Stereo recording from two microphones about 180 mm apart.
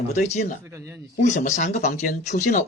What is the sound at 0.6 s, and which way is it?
Speech, 15° right (ahead or behind).